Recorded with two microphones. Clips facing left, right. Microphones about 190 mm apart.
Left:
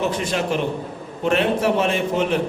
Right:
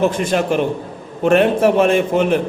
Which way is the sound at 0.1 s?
50° right (ahead or behind).